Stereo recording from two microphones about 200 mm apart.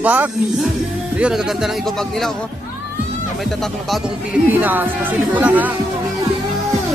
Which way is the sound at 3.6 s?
Centre (ahead or behind).